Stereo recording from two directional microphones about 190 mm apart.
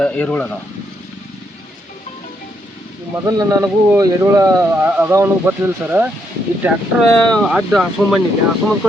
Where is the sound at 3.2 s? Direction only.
20° right (ahead or behind).